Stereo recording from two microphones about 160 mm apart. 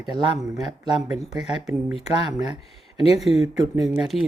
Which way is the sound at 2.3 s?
25° right (ahead or behind).